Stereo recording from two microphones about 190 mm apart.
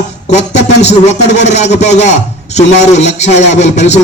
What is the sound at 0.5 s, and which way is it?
A man's voice, 35° left (ahead or behind).